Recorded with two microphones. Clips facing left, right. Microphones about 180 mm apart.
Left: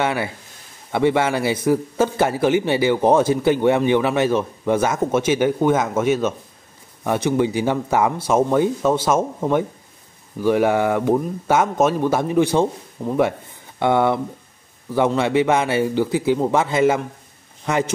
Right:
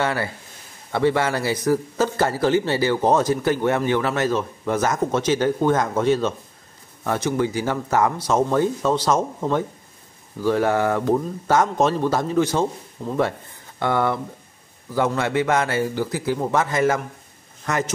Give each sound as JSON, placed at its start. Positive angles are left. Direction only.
{"t": 0.0, "sound": "speech", "side_deg": 20}
{"t": 7.1, "sound": "speech", "side_deg": 20}